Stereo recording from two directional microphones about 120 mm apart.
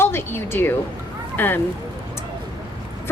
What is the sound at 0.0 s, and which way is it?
Speech, 20° left (ahead or behind).